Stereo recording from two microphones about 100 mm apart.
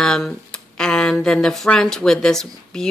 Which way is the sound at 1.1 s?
5° left (ahead or behind).